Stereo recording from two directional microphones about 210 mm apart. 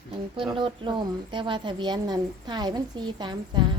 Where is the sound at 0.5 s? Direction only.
25° right (ahead or behind).